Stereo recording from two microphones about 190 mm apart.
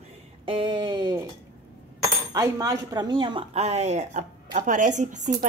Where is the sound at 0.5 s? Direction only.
25° right (ahead or behind).